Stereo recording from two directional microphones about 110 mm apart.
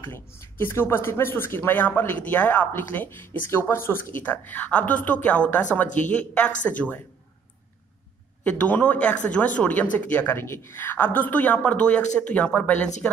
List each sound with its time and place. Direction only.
0.4 s speech: 20° left (ahead or behind)
8.5 s speech: 15° left (ahead or behind)